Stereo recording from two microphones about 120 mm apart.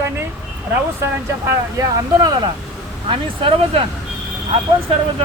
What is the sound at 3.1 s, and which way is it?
Speech, 50° right (ahead or behind).